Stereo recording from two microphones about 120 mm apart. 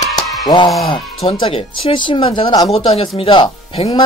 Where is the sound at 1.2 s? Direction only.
50° left (ahead or behind).